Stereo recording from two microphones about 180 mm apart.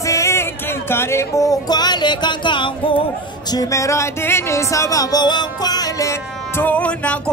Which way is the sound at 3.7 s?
15° left (ahead or behind).